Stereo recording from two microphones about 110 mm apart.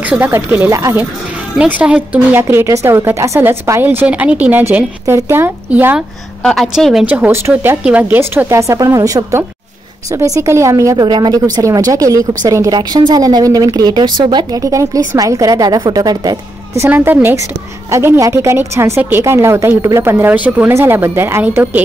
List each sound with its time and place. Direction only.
0.0 s a woman's voice: 15° right (ahead or behind)
1.6 s a woman's voice: 10° right (ahead or behind)
6.4 s a woman's voice: centre (ahead or behind)
7.1 s a woman's voice: 20° right (ahead or behind); by 14.6 s 40° right (ahead or behind)
14.6 s a woman's voice: 30° right (ahead or behind)
16.7 s a woman's voice: 20° right (ahead or behind)